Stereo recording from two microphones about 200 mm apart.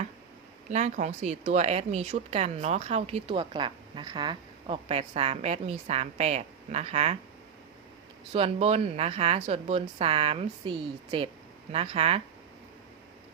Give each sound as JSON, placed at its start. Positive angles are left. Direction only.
{"t": 0.7, "sound": "speech", "side_deg": -35}
{"t": 8.3, "sound": "speech", "side_deg": -30}